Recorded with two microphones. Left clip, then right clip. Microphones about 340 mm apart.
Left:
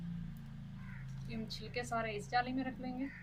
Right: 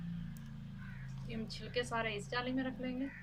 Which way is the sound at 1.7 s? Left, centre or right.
Centre.